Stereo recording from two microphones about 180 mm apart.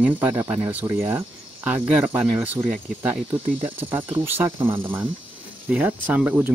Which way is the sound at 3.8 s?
30° right (ahead or behind).